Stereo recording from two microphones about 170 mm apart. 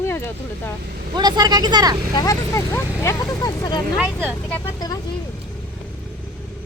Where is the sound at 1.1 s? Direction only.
25° right (ahead or behind).